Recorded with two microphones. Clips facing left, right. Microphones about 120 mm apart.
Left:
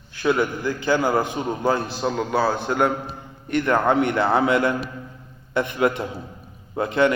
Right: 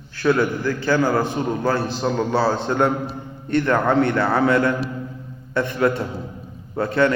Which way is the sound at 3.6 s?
15° left (ahead or behind).